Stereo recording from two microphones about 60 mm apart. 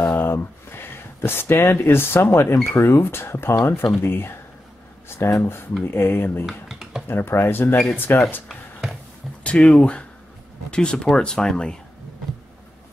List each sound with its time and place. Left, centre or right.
0.0 s speech: left
5.0 s a sound: left
5.9 s speech: left
6.4 s computer keyboard: centre
7.1 s speech: left
9.4 s speech: centre